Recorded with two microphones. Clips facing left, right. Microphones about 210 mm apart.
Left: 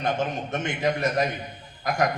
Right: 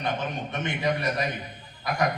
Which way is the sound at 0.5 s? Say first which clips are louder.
Left 1 dB; 45° left (ahead or behind).